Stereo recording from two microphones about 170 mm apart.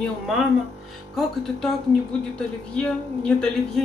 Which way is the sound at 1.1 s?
Centre (ahead or behind).